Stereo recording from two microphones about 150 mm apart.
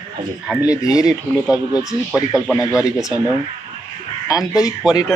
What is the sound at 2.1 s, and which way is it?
Speech, 5° right (ahead or behind).